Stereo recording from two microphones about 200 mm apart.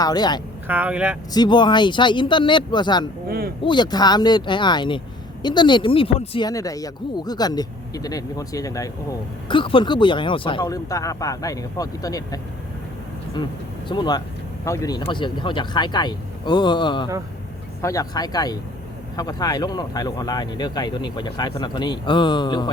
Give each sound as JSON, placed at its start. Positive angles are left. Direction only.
{"t": 0.0, "sound": "speech", "side_deg": 20}
{"t": 0.7, "sound": "speech", "side_deg": -5}
{"t": 1.3, "sound": "speech", "side_deg": 20}
{"t": 3.2, "sound": "a sound", "side_deg": -50}
{"t": 3.6, "sound": "speech", "side_deg": 25}
{"t": 13.8, "sound": "speech", "side_deg": 20}